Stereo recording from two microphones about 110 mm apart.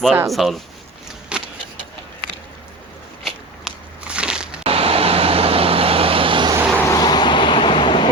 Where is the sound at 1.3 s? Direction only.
10° right (ahead or behind).